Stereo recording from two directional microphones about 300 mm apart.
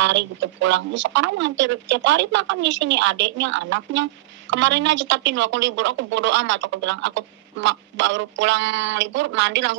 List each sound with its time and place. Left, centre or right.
0.0 s speech: right